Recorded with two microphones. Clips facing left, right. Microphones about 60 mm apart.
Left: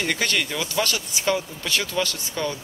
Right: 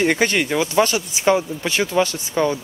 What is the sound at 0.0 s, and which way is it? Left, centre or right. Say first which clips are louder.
Speech: right 6 dB; right.